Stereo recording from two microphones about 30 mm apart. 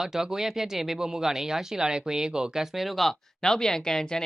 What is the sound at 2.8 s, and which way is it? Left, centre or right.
Speech, centre.